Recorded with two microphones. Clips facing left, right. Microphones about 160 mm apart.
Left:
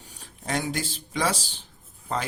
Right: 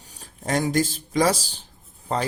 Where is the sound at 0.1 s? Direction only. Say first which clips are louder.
Right 4 dB; 40° right (ahead or behind).